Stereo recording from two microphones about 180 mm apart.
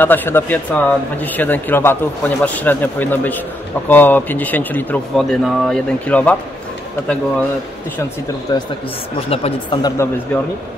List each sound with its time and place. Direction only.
0.0 s speech: 10° left (ahead or behind)
8.5 s speech: 25° left (ahead or behind)
9.8 s speech: 20° left (ahead or behind)